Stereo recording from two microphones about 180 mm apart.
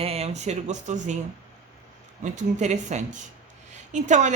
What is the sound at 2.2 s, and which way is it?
A woman's voice, 40° right (ahead or behind).